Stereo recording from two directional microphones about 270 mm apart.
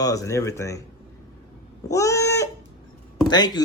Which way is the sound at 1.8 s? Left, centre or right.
Centre.